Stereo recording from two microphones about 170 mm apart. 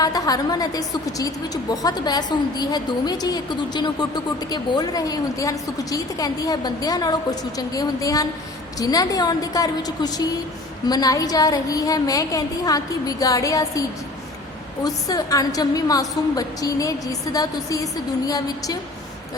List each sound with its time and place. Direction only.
0.0 s a woman's voice: 20° left (ahead or behind)
14.8 s a woman's voice: 20° left (ahead or behind)